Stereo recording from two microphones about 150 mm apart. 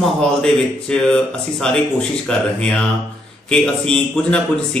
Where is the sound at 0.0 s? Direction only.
Centre (ahead or behind).